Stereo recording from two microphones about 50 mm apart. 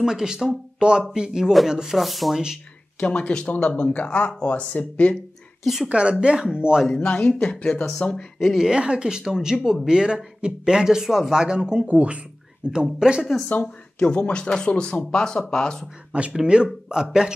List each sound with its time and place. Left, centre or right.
0.0 s speech: centre
2.0 s speech: centre
3.0 s speech: left
5.1 s a sound: centre
5.9 s speech: right
7.1 s speech: left
8.4 s speech: centre
8.6 s speech: centre
13.9 s speech: centre
16.1 s speech: right